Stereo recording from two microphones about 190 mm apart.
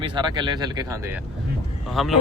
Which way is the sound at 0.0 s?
25° right (ahead or behind).